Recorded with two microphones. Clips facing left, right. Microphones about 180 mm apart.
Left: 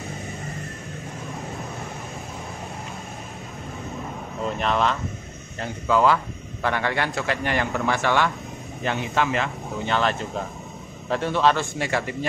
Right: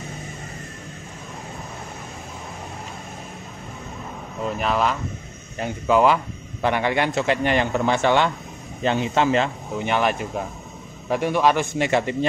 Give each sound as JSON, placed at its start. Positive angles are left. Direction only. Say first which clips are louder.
{"t": 4.5, "sound": "speech", "louder": "right 1 dB", "side_deg": -5}
{"t": 5.6, "sound": "a man's voice", "louder": "right 3 dB", "side_deg": -15}
{"t": 9.8, "sound": "a man's voice", "louder": "right 2 dB", "side_deg": -15}